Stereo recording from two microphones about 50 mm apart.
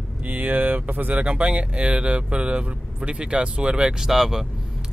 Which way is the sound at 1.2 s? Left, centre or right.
Right.